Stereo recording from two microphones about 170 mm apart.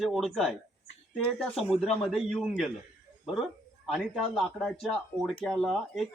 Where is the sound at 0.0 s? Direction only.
Centre (ahead or behind).